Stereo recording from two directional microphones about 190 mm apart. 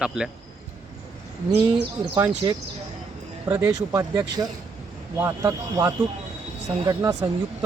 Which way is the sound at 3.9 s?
20° right (ahead or behind).